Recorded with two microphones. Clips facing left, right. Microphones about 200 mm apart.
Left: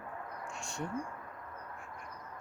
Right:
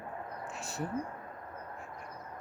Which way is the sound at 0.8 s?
35° right (ahead or behind).